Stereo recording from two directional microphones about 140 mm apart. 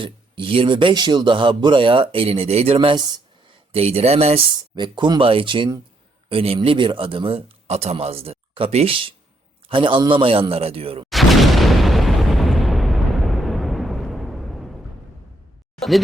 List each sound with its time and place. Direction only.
0.0 s speech: 40° right (ahead or behind)
4.7 s speech: 30° right (ahead or behind)
11.1 s boom: centre (ahead or behind)